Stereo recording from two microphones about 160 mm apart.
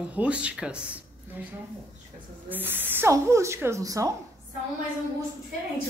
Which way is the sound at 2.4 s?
10° right (ahead or behind).